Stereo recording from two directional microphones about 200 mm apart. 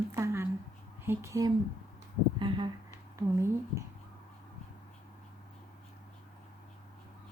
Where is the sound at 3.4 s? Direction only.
15° right (ahead or behind).